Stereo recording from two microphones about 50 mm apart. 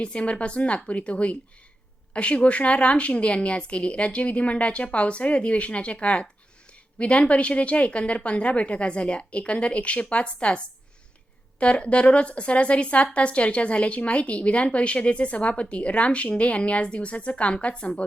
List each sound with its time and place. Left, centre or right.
0.0 s a woman's voice: left
11.6 s a woman's voice: left